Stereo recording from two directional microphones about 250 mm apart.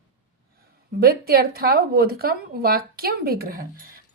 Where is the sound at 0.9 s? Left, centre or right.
Right.